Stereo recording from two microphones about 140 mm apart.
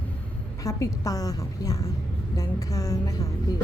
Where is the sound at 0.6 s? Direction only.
25° left (ahead or behind).